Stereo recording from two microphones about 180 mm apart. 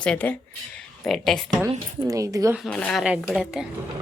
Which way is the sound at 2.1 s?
20° right (ahead or behind).